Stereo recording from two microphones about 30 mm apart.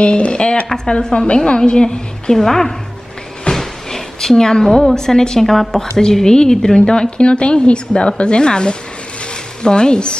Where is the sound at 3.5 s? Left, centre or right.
Centre.